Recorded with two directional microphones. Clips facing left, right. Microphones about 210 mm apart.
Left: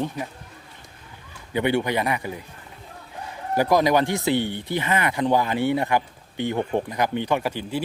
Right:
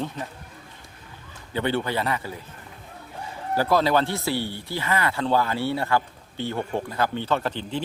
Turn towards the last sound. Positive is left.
turn(degrees=10)  # may be behind; listen again after turning